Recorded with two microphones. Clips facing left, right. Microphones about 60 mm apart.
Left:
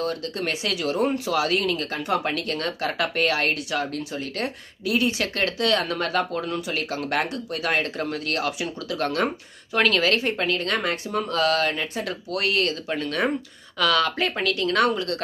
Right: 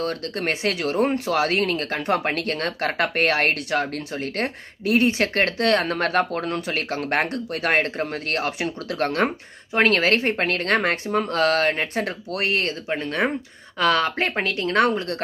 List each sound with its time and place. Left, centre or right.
0.0 s speech: right